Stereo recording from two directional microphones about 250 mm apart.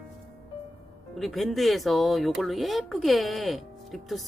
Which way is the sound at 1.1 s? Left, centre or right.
Centre.